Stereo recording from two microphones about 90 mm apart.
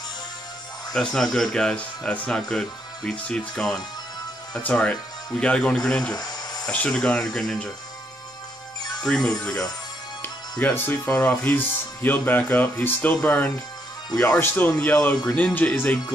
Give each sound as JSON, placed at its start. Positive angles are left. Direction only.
{"t": 0.9, "sound": "speech", "side_deg": 5}
{"t": 6.1, "sound": "a sound", "side_deg": 45}
{"t": 6.7, "sound": "speech", "side_deg": 15}
{"t": 9.0, "sound": "speech", "side_deg": 5}
{"t": 10.6, "sound": "speech", "side_deg": 25}